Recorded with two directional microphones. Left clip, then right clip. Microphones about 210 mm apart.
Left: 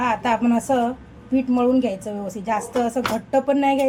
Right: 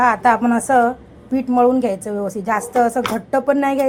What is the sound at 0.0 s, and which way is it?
A woman's voice, 20° right (ahead or behind).